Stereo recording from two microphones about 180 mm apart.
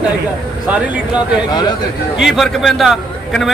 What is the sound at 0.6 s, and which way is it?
Speech, 5° right (ahead or behind).